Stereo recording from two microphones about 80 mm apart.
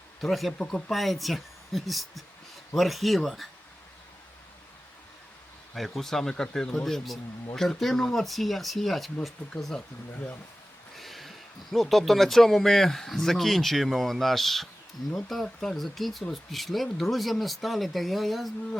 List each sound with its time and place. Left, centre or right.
0.2 s speech: centre
6.0 s speech: centre
10.1 s speech: left
10.9 s speech: centre